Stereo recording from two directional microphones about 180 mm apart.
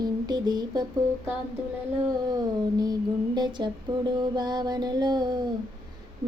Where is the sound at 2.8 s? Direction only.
20° right (ahead or behind).